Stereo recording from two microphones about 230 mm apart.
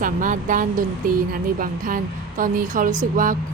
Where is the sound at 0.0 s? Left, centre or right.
Right.